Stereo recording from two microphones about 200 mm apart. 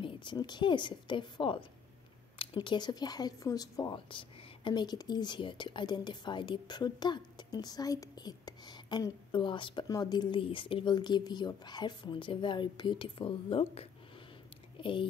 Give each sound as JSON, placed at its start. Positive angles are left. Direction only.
{"t": 0.0, "sound": "speech", "side_deg": 25}